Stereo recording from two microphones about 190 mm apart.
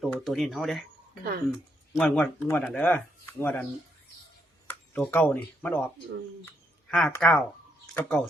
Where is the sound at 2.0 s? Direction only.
5° left (ahead or behind).